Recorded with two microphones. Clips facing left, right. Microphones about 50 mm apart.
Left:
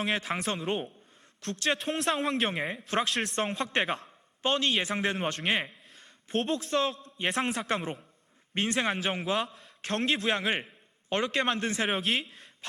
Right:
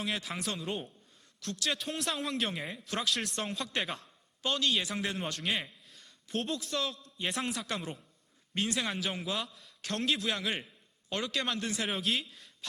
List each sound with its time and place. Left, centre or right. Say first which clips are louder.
0.0 s a man's voice: left 5 dB; left
0.6 s speech: left 5 dB; left
1.4 s a man's voice: left 5 dB; left
11.9 s speech: left 3 dB; left